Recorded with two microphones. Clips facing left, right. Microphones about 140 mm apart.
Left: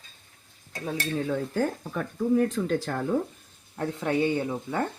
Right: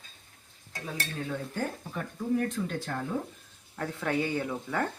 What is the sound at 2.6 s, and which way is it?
Speech, 70° left (ahead or behind).